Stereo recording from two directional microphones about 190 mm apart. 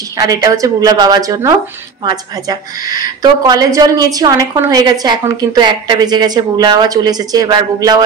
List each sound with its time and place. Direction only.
0.2 s a woman's voice: 20° right (ahead or behind)